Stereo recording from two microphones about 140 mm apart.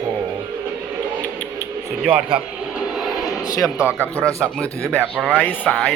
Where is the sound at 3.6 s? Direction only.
10° right (ahead or behind).